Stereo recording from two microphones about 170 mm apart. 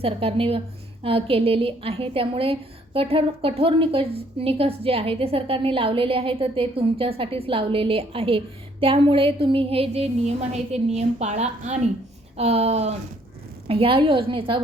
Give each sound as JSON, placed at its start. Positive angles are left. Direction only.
{"t": 0.0, "sound": "a woman's voice", "side_deg": -35}